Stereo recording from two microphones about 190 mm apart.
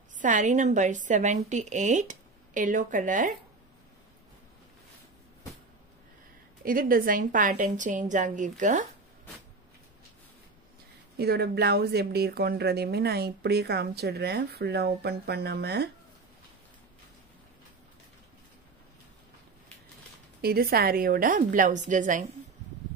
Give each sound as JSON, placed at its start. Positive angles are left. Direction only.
{"t": 0.2, "sound": "a woman's voice", "side_deg": -40}
{"t": 6.6, "sound": "a woman's voice", "side_deg": -45}
{"t": 11.1, "sound": "speech", "side_deg": -55}
{"t": 20.4, "sound": "a woman's voice", "side_deg": -55}